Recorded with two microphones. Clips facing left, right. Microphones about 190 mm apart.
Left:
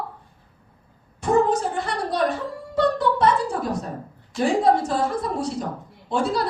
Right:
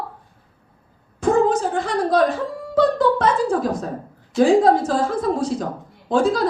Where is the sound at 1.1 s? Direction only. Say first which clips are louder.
Right 3 dB; 90° right.